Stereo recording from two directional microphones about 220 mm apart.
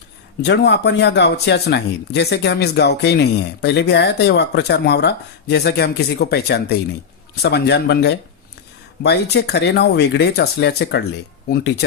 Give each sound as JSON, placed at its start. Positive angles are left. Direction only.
{"t": 0.4, "sound": "speech", "side_deg": 50}